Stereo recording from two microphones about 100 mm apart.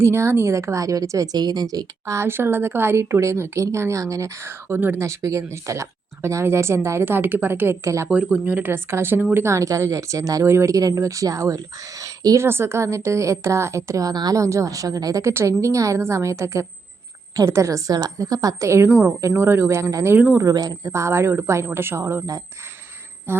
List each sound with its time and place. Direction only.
0.0 s speech: 25° right (ahead or behind)
2.1 s a woman's voice: 25° right (ahead or behind)
8.0 s a woman's voice: 15° right (ahead or behind); by 22.4 s 30° right (ahead or behind)
23.3 s a sound: 25° right (ahead or behind)